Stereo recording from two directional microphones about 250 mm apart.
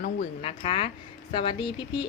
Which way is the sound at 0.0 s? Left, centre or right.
Left.